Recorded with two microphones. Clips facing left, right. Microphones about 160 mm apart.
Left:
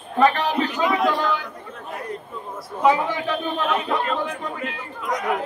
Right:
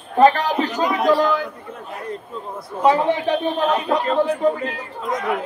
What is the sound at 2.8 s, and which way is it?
A man's voice, 35° right (ahead or behind).